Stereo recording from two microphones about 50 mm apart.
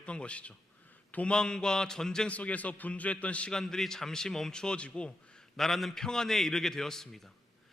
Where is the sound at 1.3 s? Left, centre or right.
Centre.